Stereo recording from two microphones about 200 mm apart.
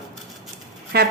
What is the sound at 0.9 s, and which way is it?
Speech, 50° right (ahead or behind).